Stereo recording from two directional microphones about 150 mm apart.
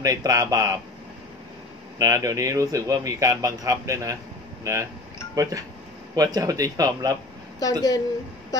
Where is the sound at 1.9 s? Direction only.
25° right (ahead or behind).